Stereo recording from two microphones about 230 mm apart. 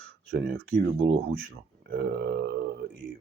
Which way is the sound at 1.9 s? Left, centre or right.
Right.